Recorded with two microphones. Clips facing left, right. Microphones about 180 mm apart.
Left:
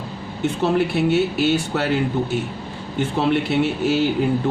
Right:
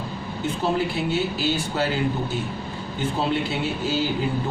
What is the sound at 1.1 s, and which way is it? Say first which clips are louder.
Speech: left 6 dB; 70° left (ahead or behind).